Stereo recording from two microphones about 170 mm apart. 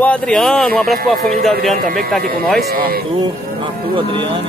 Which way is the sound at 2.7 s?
60° right (ahead or behind).